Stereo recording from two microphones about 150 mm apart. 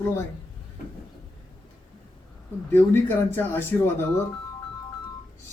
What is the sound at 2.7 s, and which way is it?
Speech, 15° left (ahead or behind).